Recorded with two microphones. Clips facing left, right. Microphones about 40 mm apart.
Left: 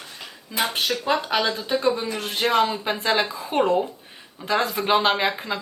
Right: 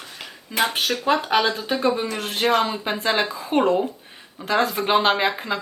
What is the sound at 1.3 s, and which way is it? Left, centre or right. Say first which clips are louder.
Speech: right 3 dB; right.